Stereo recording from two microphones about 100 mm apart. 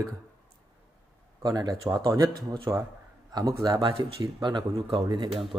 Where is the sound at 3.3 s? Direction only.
35° right (ahead or behind).